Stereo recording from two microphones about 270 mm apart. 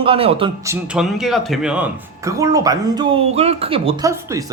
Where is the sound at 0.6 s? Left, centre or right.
Centre.